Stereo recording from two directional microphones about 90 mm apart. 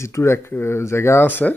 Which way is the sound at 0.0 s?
30° left (ahead or behind).